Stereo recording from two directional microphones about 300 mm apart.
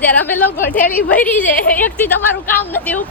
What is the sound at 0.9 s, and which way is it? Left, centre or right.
Speech, left.